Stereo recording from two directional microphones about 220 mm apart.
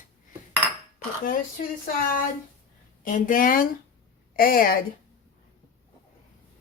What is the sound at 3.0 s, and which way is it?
Speech, 40° left (ahead or behind).